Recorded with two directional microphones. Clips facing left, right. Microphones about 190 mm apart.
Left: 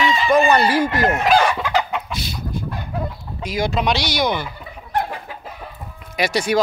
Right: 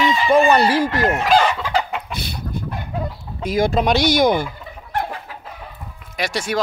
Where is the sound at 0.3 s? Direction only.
30° right (ahead or behind).